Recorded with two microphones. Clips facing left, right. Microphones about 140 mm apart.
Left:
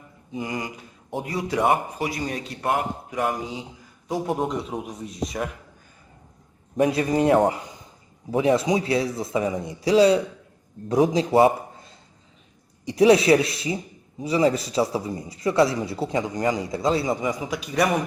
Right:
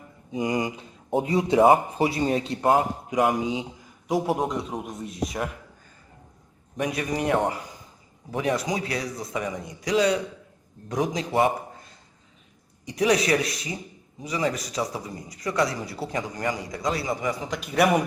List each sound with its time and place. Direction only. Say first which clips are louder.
0.3 s speech: right 4 dB; 20° right (ahead or behind)
4.1 s speech: right 1 dB; 5° right (ahead or behind)
6.7 s a man's voice: left 7 dB; 30° left (ahead or behind)
17.4 s speech: even; 5° left (ahead or behind)